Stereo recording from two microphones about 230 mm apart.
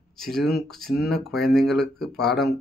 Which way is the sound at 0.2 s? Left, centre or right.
Centre.